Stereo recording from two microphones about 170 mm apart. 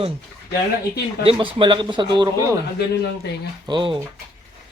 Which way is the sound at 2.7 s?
75° left (ahead or behind).